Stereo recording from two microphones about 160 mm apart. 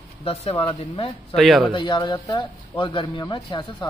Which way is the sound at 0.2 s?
35° left (ahead or behind).